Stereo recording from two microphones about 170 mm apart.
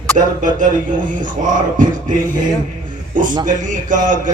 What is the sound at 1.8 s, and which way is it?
Speech, 50° right (ahead or behind).